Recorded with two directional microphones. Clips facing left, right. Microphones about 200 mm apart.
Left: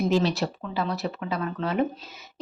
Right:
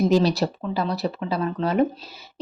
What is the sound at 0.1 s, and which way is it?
Speech, 35° right (ahead or behind).